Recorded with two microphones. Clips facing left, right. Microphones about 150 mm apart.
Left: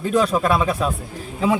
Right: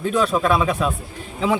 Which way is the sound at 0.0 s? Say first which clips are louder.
Left 1 dB; centre (ahead or behind).